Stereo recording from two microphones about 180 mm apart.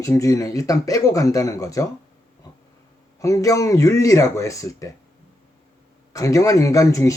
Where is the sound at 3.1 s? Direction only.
20° left (ahead or behind).